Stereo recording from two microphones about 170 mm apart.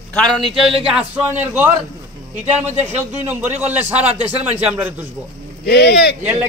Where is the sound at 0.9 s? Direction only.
5° right (ahead or behind).